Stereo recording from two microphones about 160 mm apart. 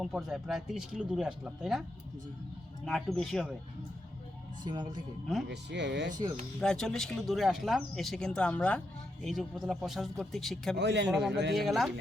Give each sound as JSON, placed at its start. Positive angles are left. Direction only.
{"t": 0.0, "sound": "speech", "side_deg": 0}
{"t": 2.8, "sound": "speech", "side_deg": 5}
{"t": 4.6, "sound": "speech", "side_deg": -25}
{"t": 5.5, "sound": "speech", "side_deg": -90}
{"t": 6.6, "sound": "speech", "side_deg": 5}
{"t": 10.8, "sound": "speech", "side_deg": -90}
{"t": 11.1, "sound": "speech", "side_deg": 0}